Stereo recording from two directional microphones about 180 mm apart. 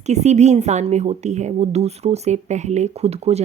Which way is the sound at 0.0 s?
40° right (ahead or behind).